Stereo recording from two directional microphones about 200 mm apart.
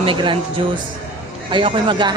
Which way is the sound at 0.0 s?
25° right (ahead or behind).